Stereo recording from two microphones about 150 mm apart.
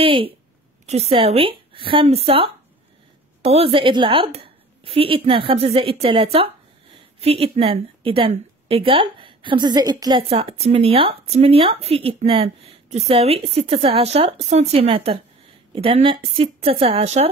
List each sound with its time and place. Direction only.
0.0 s speech: 35° right (ahead or behind)
10.2 s speech: 40° right (ahead or behind)